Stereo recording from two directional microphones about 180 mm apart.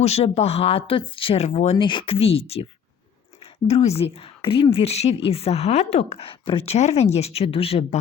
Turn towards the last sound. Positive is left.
turn(degrees=30)  # may be behind; listen again after turning